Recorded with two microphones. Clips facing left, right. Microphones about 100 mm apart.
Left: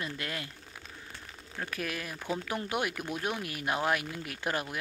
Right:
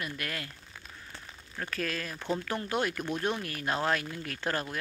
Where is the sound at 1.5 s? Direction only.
15° left (ahead or behind).